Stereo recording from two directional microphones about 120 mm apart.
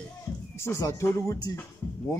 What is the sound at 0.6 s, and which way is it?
Speech, 25° left (ahead or behind).